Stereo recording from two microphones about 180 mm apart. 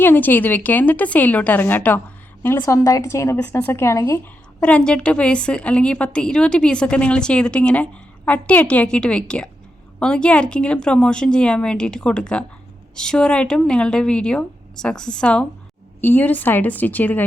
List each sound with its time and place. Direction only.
0.0 s a woman's voice: 10° left (ahead or behind)
4.6 s a woman's voice: 5° left (ahead or behind)